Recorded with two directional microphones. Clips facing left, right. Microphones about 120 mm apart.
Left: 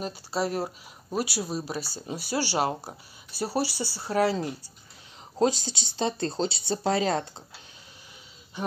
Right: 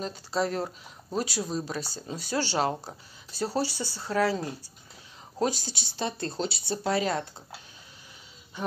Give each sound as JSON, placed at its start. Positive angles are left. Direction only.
{"t": 0.0, "sound": "speech", "side_deg": 10}
{"t": 5.4, "sound": "speech", "side_deg": 25}